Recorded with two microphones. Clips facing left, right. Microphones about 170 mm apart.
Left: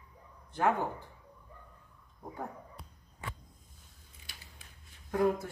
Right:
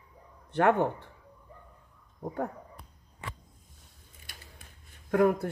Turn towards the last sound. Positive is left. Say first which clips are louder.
# right 5 dB
turn(degrees=-60)  # may be behind; listen again after turning